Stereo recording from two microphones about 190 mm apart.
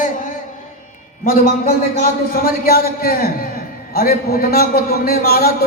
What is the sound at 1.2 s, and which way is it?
A man's voice, 50° left (ahead or behind).